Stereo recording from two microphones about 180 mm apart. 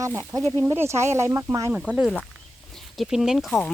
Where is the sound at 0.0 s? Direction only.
15° right (ahead or behind).